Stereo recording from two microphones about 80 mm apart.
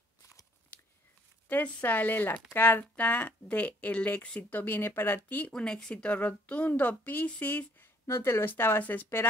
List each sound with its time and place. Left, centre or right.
1.5 s speech: left
5.5 s speech: centre